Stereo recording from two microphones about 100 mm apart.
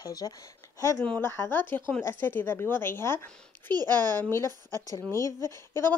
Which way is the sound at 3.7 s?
45° right (ahead or behind).